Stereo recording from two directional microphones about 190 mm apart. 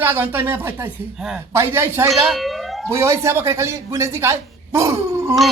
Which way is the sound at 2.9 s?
15° right (ahead or behind).